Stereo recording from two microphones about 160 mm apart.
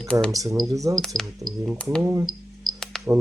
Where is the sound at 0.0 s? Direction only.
5° left (ahead or behind).